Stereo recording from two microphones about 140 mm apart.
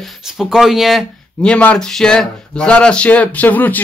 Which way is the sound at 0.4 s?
Centre (ahead or behind).